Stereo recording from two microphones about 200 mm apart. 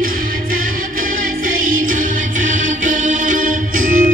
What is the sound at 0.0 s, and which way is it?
Music, 45° right (ahead or behind).